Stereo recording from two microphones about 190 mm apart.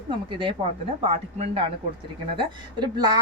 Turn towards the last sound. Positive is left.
turn(degrees=-20)  # may be behind; listen again after turning